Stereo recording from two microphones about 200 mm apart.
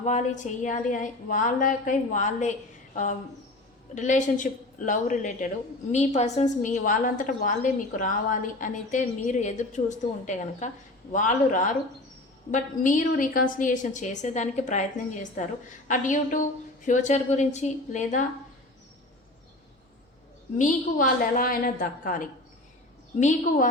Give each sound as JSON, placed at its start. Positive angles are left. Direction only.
{"t": 0.0, "sound": "a woman's voice", "side_deg": 35}
{"t": 20.6, "sound": "a woman's voice", "side_deg": 40}